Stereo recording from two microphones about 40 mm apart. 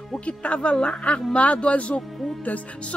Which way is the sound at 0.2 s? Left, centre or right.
Left.